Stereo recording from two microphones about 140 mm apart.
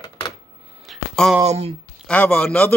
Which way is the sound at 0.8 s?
Centre (ahead or behind).